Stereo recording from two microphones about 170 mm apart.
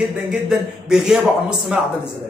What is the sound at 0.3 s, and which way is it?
Speech, 5° right (ahead or behind).